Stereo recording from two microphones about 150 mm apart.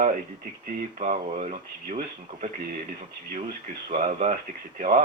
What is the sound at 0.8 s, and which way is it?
Speech, 50° right (ahead or behind).